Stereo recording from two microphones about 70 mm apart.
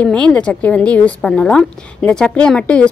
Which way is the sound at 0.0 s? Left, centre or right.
Centre.